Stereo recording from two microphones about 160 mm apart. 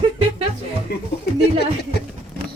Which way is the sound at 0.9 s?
80° left.